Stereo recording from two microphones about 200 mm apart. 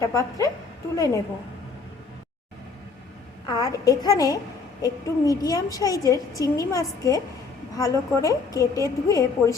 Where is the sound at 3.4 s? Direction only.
20° left (ahead or behind).